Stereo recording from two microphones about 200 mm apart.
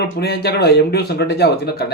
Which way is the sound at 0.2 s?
55° left (ahead or behind).